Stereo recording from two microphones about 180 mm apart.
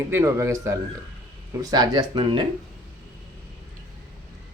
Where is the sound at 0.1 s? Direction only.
15° right (ahead or behind).